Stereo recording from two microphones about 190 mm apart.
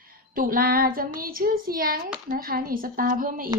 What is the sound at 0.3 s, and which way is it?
A woman's voice, 50° right (ahead or behind).